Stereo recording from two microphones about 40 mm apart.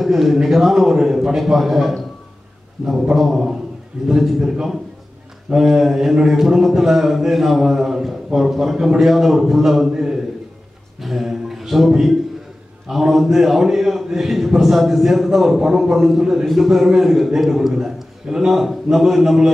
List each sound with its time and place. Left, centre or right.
0.0 s a man's voice: centre
11.0 s a sound: centre
11.9 s a man's voice: centre